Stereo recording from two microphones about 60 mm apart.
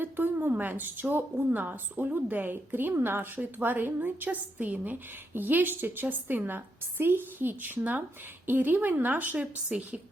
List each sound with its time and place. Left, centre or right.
0.0 s a woman's voice: right; by 10.0 s centre